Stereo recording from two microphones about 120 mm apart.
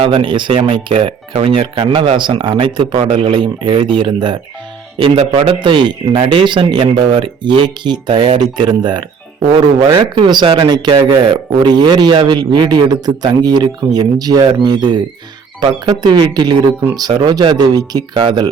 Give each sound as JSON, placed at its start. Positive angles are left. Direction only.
{"t": 0.0, "sound": "a man's voice", "side_deg": -45}